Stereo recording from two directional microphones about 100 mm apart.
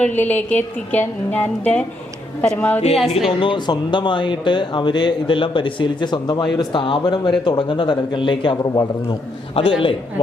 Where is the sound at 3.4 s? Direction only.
55° left (ahead or behind).